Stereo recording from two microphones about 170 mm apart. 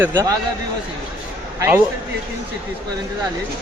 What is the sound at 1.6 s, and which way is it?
Speech, 15° right (ahead or behind).